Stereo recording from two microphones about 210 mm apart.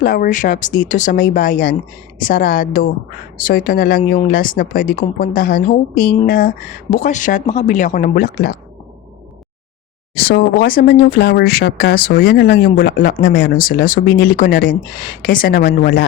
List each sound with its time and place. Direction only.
0.0 s speech: 45° left (ahead or behind)
10.2 s speech: 45° left (ahead or behind)